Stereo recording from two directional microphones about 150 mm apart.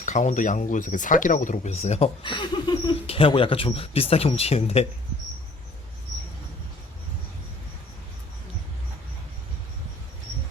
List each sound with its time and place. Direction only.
0.0 s speech: 55° left (ahead or behind)
2.2 s speech: 30° left (ahead or behind)